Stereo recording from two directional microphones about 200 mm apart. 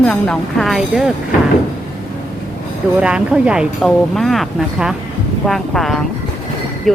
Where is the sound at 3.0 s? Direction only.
5° right (ahead or behind).